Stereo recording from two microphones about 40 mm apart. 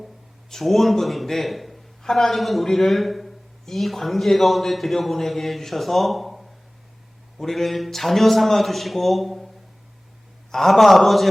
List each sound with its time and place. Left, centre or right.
0.5 s a man's voice: centre
10.5 s a man's voice: centre